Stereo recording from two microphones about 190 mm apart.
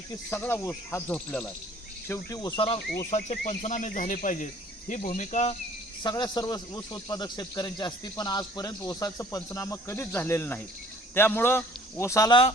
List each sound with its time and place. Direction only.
0.3 s speech: 10° left (ahead or behind)
2.0 s speech: 15° left (ahead or behind)
3.1 s speech: 40° left (ahead or behind)
6.0 s speech: 20° left (ahead or behind)